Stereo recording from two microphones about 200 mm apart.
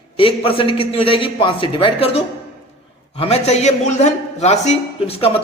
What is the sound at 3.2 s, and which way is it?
A man's voice, 30° left (ahead or behind).